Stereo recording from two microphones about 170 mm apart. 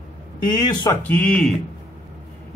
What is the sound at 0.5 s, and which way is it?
Speech, 25° left (ahead or behind).